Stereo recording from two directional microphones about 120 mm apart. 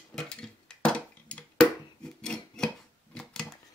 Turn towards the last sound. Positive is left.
turn(degrees=5)  # may be behind; listen again after turning